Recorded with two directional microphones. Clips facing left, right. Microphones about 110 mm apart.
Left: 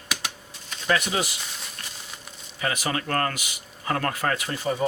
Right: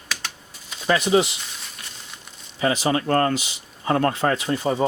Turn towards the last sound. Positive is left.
turn(degrees=-25)  # may be behind; listen again after turning